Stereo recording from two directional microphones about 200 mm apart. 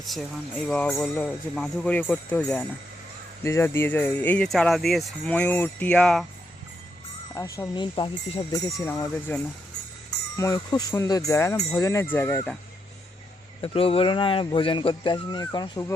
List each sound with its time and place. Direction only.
0.0 s speech: centre (ahead or behind)
7.3 s speech: 15° left (ahead or behind)
13.6 s speech: 30° left (ahead or behind)